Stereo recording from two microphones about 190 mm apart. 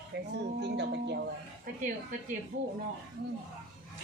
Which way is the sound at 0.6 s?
65° right (ahead or behind).